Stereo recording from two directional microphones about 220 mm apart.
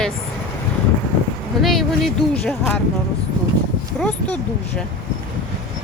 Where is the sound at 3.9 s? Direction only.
5° left (ahead or behind).